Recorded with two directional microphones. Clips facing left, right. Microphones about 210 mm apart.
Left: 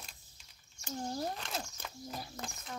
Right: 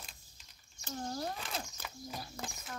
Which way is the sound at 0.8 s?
10° left (ahead or behind).